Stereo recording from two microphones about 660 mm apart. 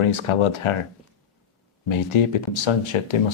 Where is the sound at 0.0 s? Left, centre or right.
Left.